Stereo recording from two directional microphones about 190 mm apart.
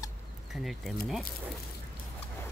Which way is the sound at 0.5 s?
Centre (ahead or behind).